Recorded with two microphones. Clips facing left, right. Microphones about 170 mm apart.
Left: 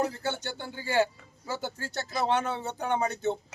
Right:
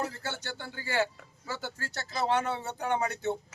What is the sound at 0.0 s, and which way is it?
A man's voice, 15° left (ahead or behind).